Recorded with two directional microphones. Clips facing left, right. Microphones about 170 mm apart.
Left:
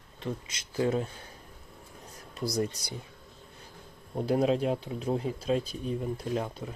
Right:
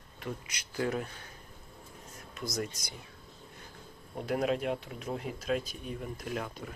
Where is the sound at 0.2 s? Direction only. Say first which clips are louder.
Left 4 dB; 25° left (ahead or behind).